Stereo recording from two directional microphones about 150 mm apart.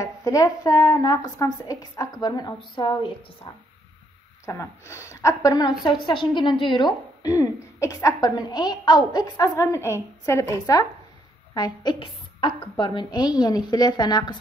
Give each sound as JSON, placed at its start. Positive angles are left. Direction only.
{"t": 0.0, "sound": "a woman's voice", "side_deg": 20}
{"t": 4.5, "sound": "a woman's voice", "side_deg": 20}